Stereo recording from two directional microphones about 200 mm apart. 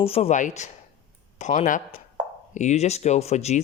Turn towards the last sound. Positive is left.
turn(degrees=35)  # may be behind; listen again after turning